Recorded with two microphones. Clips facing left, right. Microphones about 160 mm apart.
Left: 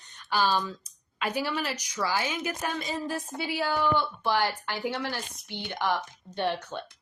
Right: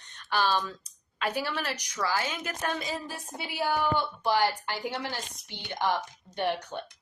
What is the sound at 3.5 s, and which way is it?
A woman's voice, 15° right (ahead or behind).